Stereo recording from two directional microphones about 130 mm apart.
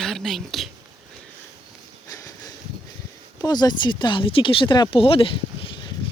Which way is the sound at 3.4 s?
30° left (ahead or behind).